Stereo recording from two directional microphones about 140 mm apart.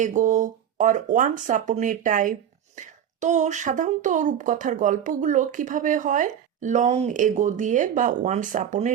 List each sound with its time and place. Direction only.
0.0 s speech: 60° right (ahead or behind)